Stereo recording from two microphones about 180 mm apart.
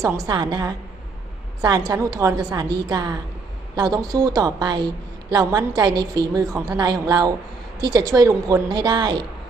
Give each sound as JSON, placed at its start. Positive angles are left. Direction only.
{"t": 0.3, "sound": "a woman's voice", "side_deg": -25}